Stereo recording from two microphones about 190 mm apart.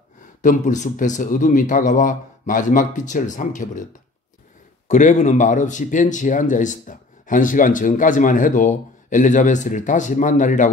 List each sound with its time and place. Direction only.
0.4 s speech: 40° left (ahead or behind)